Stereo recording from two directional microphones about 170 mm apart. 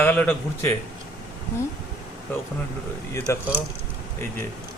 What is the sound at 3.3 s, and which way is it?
Speech, 15° left (ahead or behind).